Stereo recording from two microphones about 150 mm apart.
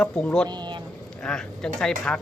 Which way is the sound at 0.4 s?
30° right (ahead or behind).